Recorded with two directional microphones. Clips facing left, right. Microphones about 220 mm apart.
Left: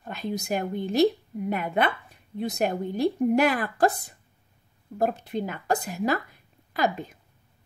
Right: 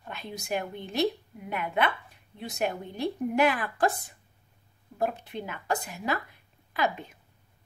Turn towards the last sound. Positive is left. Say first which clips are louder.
# left 3 dB
turn(degrees=40)  # may be behind; listen again after turning